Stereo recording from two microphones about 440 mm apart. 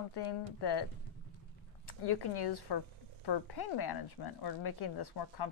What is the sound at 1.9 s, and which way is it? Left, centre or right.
Speech, left.